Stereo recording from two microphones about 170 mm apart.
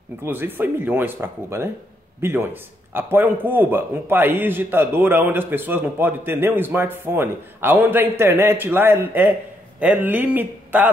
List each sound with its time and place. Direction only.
0.2 s a man's voice: 10° right (ahead or behind)